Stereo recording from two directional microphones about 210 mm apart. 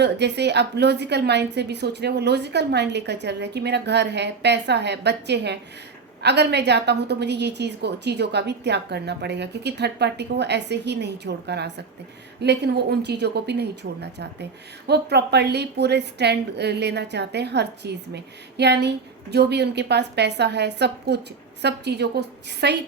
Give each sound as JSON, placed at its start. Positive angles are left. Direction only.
{"t": 0.0, "sound": "a woman's voice", "side_deg": -55}